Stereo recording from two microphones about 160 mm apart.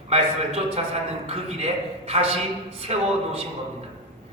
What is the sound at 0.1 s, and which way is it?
A man's voice, 35° right (ahead or behind).